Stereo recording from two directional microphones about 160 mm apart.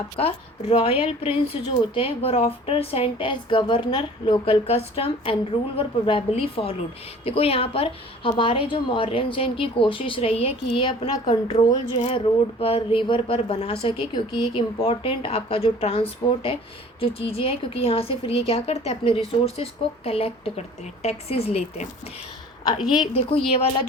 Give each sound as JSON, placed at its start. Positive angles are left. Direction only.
{"t": 0.2, "sound": "a woman's voice", "side_deg": 35}
{"t": 23.5, "sound": "a woman's voice", "side_deg": 35}